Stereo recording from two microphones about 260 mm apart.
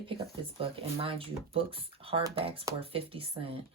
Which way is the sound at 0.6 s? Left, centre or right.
Right.